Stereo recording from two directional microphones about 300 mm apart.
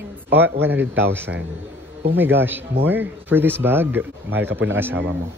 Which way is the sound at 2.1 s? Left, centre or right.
Centre.